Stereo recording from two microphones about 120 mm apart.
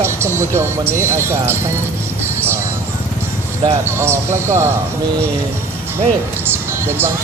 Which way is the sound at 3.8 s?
20° right (ahead or behind).